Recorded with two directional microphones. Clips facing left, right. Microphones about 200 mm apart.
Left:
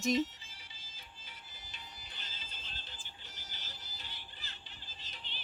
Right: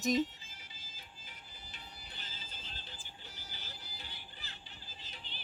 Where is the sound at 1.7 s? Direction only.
60° right (ahead or behind).